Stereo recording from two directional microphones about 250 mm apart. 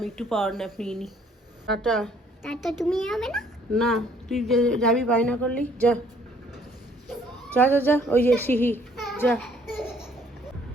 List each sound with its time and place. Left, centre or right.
0.0 s a child's voice: centre
7.5 s a child's voice: centre